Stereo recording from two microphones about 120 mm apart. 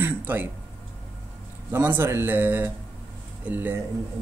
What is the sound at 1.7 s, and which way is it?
Speech, 20° right (ahead or behind).